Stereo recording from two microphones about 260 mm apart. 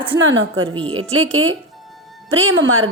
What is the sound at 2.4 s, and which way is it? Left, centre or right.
Speech, right.